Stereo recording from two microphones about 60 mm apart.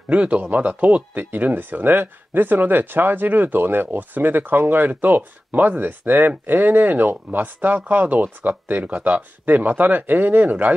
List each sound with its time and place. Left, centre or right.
0.1 s speech: right